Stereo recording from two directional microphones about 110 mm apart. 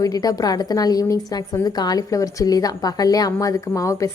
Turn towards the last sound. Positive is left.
turn(degrees=30)  # may be behind; listen again after turning